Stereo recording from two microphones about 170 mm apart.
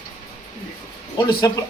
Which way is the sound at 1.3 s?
25° left (ahead or behind).